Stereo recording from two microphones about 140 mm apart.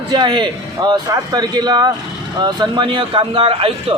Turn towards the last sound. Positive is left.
turn(degrees=-40)  # may be behind; listen again after turning